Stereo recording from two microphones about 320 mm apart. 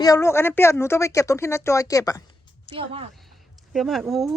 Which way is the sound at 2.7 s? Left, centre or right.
Centre.